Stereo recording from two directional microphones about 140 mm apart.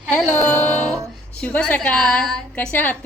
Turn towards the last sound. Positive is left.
turn(degrees=10)  # may be behind; listen again after turning